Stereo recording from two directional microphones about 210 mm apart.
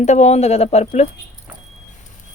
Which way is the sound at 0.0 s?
35° left (ahead or behind).